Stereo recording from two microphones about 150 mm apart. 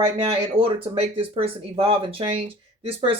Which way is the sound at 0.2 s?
40° right (ahead or behind).